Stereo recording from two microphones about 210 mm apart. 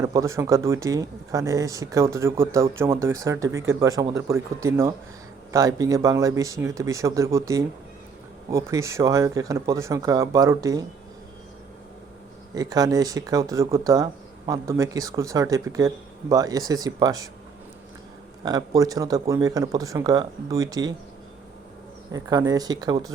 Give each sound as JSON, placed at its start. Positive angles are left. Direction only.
{"t": 0.0, "sound": "speech", "side_deg": -15}
{"t": 12.5, "sound": "speech", "side_deg": -15}
{"t": 18.4, "sound": "speech", "side_deg": -15}
{"t": 22.1, "sound": "speech", "side_deg": -20}